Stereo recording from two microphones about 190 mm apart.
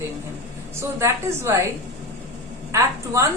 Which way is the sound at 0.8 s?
15° right (ahead or behind).